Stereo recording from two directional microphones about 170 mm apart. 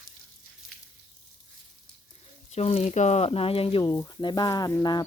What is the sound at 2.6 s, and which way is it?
Speech, 40° left (ahead or behind).